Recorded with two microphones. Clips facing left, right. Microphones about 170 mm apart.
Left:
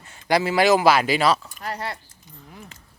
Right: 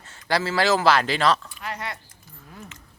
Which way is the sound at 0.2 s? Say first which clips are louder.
Left 4 dB; 15° left (ahead or behind).